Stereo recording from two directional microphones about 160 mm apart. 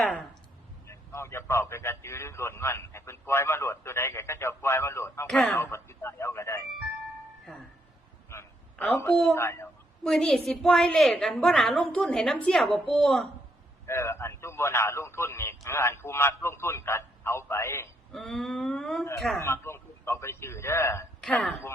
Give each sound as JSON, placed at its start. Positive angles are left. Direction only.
{"t": 0.0, "sound": "a woman's voice", "side_deg": 0}
{"t": 0.9, "sound": "a man's voice", "side_deg": 15}
{"t": 5.3, "sound": "a man's voice", "side_deg": 5}
{"t": 8.3, "sound": "a sound", "side_deg": 20}
{"t": 8.7, "sound": "a sound", "side_deg": 0}
{"t": 9.3, "sound": "a man's voice", "side_deg": 15}
{"t": 10.0, "sound": "a woman's voice", "side_deg": 5}
{"t": 13.8, "sound": "a man's voice", "side_deg": 15}
{"t": 18.1, "sound": "a woman's voice", "side_deg": 0}
{"t": 19.4, "sound": "a man's voice", "side_deg": 15}
{"t": 21.2, "sound": "speech", "side_deg": 5}